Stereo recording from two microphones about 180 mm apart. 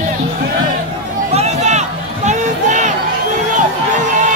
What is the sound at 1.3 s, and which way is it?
Run, 40° right (ahead or behind).